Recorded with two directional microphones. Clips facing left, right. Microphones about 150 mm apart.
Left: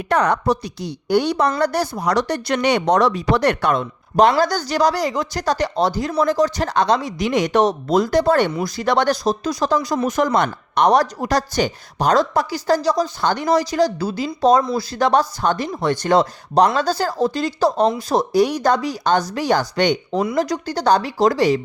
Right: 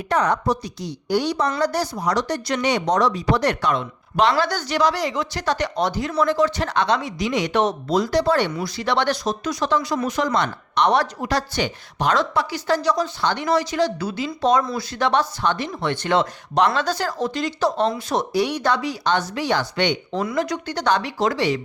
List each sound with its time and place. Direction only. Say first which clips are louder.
0.1 s a woman's voice: left 3 dB; 65° left (ahead or behind); by 7.1 s 35° left (ahead or behind)
7.2 s speech: left 5 dB; 50° left (ahead or behind)